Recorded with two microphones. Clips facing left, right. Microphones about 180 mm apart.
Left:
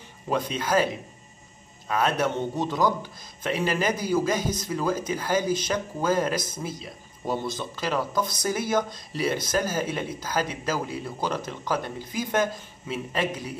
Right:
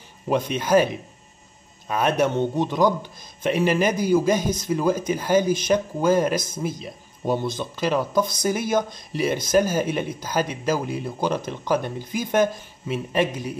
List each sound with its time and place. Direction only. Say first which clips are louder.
0.3 s speech: right 5 dB; 20° right (ahead or behind)
1.9 s speech: right 3 dB; 15° right (ahead or behind)